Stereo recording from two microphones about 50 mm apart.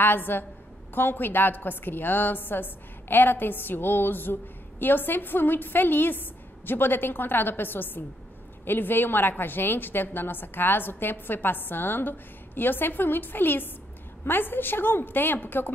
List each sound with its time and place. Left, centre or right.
0.0 s a woman's voice: left